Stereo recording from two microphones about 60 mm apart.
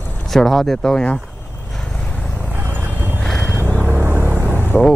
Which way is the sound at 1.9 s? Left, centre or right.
Left.